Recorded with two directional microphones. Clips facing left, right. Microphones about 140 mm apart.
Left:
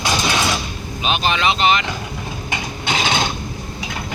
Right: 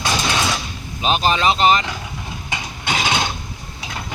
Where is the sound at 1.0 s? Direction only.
35° right (ahead or behind).